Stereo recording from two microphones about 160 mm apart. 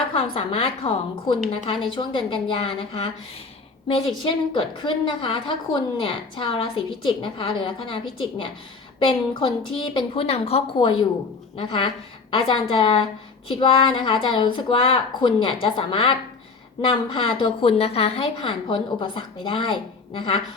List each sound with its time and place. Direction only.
0.1 s a woman's voice: 35° left (ahead or behind)